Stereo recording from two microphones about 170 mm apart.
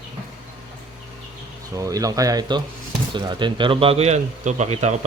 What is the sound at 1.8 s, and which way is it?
Speech, 20° right (ahead or behind).